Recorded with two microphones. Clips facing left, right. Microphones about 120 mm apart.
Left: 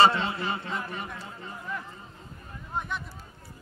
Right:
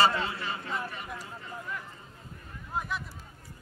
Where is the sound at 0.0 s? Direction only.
25° left (ahead or behind).